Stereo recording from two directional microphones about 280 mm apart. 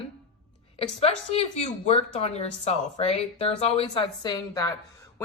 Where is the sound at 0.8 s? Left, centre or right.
Left.